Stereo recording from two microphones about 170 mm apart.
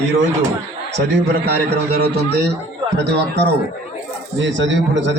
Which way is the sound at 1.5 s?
70° right (ahead or behind).